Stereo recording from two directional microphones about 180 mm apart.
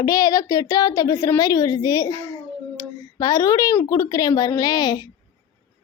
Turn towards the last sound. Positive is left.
turn(degrees=20)  # may be behind; listen again after turning